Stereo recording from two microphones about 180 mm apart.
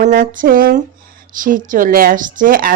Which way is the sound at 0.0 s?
50° right (ahead or behind).